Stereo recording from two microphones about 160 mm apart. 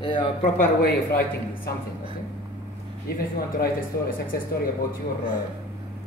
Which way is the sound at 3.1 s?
65° left (ahead or behind).